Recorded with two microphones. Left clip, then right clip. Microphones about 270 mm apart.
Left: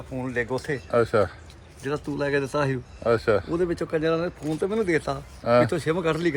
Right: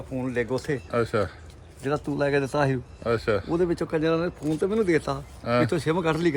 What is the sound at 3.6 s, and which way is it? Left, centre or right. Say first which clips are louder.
Speech: even; right.